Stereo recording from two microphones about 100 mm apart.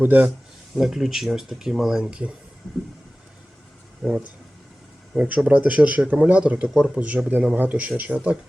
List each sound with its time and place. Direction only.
0.0 s speech: 15° right (ahead or behind)
0.8 s speech: 5° right (ahead or behind)
4.0 s speech: 5° right (ahead or behind)